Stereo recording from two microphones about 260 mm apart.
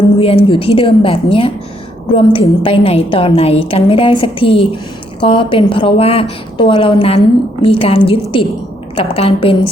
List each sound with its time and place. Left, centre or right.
0.2 s a woman's voice: left